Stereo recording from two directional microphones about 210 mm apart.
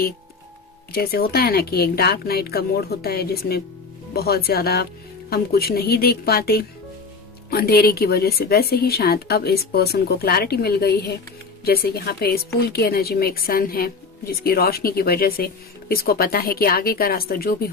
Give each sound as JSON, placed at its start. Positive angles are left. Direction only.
{"t": 0.9, "sound": "a woman's voice", "side_deg": 45}